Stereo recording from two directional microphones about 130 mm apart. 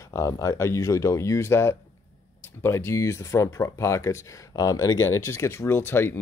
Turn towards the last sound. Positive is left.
turn(degrees=20)  # may be behind; listen again after turning